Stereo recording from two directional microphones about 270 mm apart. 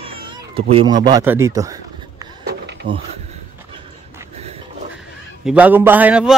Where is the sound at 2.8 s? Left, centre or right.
Right.